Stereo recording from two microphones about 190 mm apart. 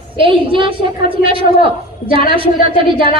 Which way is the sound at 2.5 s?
25° right (ahead or behind).